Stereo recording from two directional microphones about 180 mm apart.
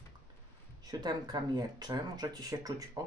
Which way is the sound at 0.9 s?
25° right (ahead or behind).